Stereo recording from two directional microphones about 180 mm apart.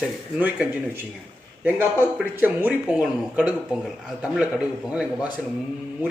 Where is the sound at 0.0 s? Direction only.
5° right (ahead or behind).